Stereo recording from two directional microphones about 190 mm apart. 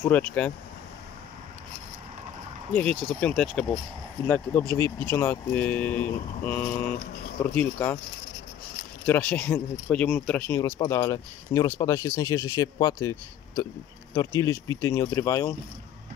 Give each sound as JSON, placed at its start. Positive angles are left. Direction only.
{"t": 0.0, "sound": "speech", "side_deg": 10}
{"t": 2.7, "sound": "speech", "side_deg": 5}
{"t": 9.0, "sound": "speech", "side_deg": 10}
{"t": 14.1, "sound": "speech", "side_deg": 20}